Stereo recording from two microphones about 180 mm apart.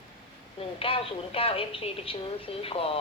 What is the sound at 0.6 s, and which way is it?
A woman's voice, 30° left (ahead or behind).